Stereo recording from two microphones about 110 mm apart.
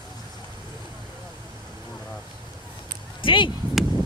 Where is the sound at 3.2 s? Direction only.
50° left (ahead or behind).